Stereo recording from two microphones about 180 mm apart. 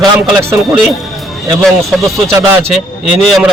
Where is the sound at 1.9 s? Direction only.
Centre (ahead or behind).